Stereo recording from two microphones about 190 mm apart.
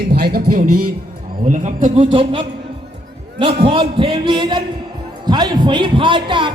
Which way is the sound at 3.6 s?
25° right (ahead or behind).